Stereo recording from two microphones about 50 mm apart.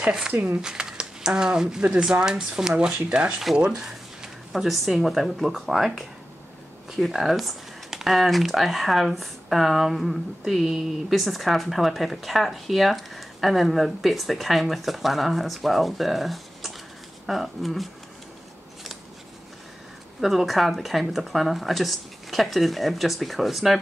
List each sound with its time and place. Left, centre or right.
0.3 s speech: right
0.6 s speech: centre
3.8 s speech: centre
20.2 s speech: centre